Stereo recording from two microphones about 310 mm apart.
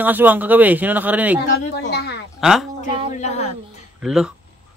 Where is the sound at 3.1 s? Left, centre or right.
Left.